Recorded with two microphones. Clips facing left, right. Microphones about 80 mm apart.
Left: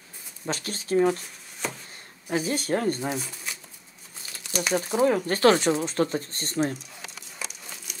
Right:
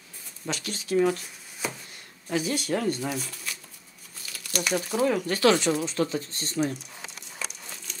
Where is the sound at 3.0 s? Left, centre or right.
Left.